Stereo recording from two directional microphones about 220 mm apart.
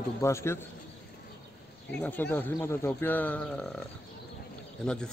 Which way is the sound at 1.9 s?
5° left (ahead or behind).